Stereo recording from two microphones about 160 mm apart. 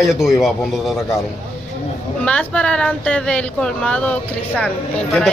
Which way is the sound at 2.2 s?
5° left (ahead or behind).